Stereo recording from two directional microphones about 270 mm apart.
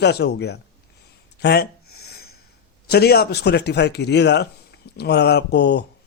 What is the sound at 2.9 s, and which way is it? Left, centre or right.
Speech, left.